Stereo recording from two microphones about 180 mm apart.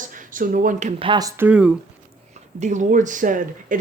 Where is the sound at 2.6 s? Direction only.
40° right (ahead or behind).